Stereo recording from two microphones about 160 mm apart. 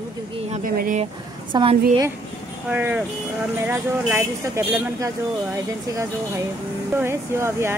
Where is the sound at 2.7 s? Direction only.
10° right (ahead or behind).